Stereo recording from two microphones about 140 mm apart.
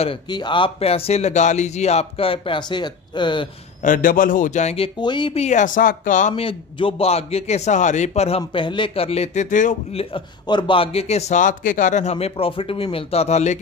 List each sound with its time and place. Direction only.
0.3 s a man's voice: 35° left (ahead or behind)
3.8 s speech: 75° left (ahead or behind); by 5.4 s 35° left (ahead or behind)
5.4 s speech: 60° left (ahead or behind)
6.3 s a man's voice: 40° left (ahead or behind); by 9.8 s 65° left (ahead or behind)
9.9 s a man's voice: 35° left (ahead or behind); by 13.6 s 55° left (ahead or behind)